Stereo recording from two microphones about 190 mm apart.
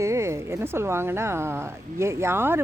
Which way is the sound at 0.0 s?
15° right (ahead or behind).